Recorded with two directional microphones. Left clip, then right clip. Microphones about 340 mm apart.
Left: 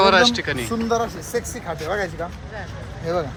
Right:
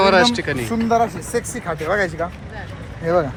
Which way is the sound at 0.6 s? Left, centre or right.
Right.